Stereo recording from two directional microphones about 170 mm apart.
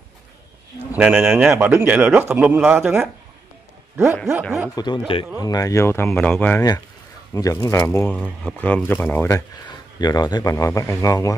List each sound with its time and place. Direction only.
0.9 s speech: 10° right (ahead or behind)
3.9 s speech: 15° right (ahead or behind)
4.4 s speech: centre (ahead or behind)
4.7 s speech: 25° left (ahead or behind)
9.9 s speech: 25° left (ahead or behind)